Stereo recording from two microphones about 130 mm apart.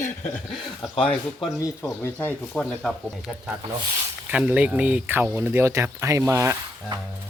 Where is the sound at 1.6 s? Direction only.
20° left (ahead or behind).